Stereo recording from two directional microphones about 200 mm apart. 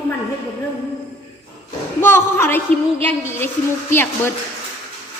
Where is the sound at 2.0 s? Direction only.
10° left (ahead or behind).